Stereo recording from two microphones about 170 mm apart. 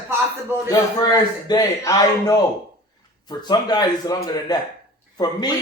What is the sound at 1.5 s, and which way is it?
Speech, 20° left (ahead or behind).